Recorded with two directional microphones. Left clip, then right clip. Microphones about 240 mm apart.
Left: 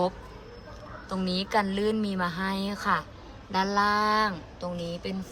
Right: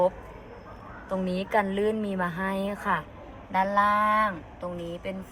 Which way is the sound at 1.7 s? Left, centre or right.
Centre.